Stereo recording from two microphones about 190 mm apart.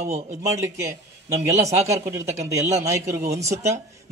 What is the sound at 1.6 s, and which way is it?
Speech, 35° right (ahead or behind).